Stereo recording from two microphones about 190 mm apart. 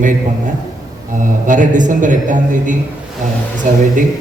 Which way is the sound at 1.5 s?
40° right (ahead or behind).